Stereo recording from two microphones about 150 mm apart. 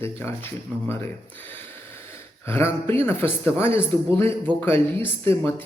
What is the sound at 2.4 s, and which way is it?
Speech, 15° left (ahead or behind).